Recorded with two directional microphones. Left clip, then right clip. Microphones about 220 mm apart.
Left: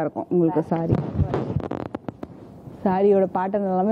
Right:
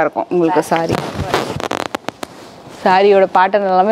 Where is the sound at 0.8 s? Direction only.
5° right (ahead or behind).